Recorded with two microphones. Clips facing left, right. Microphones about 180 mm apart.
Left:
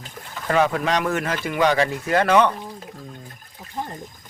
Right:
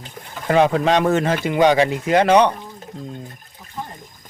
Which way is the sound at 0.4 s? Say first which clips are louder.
Right 4 dB; 25° right (ahead or behind).